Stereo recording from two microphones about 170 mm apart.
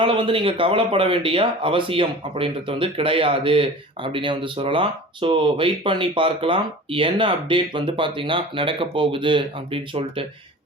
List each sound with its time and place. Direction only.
0.0 s speech: 30° right (ahead or behind)